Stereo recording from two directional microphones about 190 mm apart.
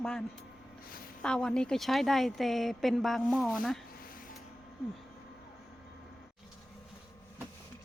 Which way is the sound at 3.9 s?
50° left (ahead or behind).